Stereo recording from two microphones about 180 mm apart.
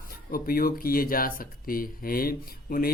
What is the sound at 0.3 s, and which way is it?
Speech, 55° left (ahead or behind).